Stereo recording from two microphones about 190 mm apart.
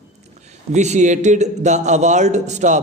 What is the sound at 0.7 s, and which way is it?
A man's voice, 40° right (ahead or behind).